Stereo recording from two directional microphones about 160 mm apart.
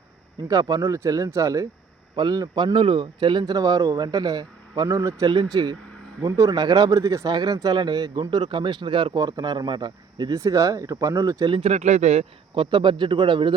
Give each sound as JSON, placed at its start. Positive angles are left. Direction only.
{"t": 0.4, "sound": "speech", "side_deg": -20}
{"t": 11.7, "sound": "speech", "side_deg": -45}
{"t": 12.5, "sound": "a man's voice", "side_deg": -30}